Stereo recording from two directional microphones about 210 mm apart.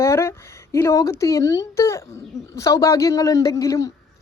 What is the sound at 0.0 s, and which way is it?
Speech, 15° left (ahead or behind).